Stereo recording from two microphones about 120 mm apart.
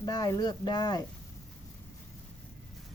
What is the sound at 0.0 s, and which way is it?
Speech, 30° left (ahead or behind).